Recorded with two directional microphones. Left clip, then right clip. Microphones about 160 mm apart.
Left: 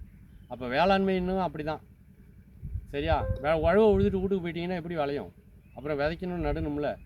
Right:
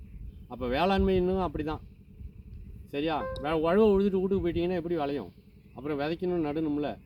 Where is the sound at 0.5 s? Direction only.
30° left (ahead or behind).